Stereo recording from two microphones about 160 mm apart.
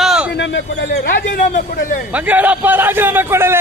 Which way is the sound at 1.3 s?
55° left (ahead or behind).